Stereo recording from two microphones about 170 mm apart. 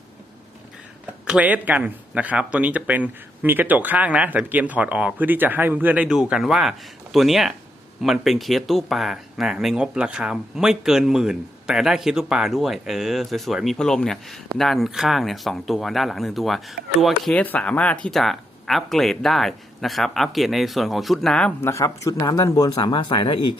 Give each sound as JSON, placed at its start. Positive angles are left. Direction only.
{"t": 1.3, "sound": "speech", "side_deg": -10}
{"t": 21.7, "sound": "speech", "side_deg": 15}